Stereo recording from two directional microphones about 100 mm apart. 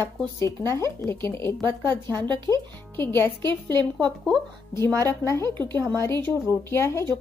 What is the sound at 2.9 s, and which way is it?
Speech, 20° left (ahead or behind).